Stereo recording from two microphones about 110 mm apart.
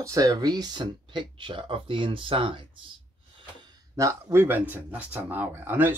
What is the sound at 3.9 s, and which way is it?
Speech, 30° right (ahead or behind).